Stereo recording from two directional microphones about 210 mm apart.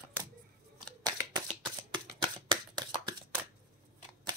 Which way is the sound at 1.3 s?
20° right (ahead or behind).